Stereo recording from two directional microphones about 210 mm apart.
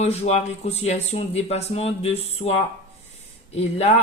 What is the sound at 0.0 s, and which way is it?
Speech, 30° left (ahead or behind).